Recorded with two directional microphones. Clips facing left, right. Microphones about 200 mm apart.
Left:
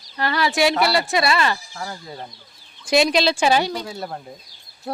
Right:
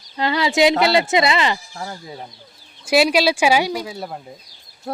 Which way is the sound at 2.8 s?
5° right (ahead or behind).